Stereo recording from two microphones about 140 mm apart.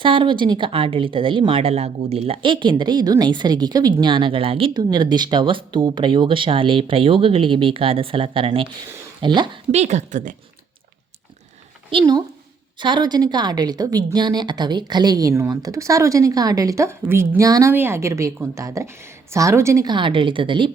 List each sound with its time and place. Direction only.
0.0 s speech: 35° right (ahead or behind)
9.7 s a woman's voice: 55° right (ahead or behind)
11.9 s a woman's voice: 35° right (ahead or behind)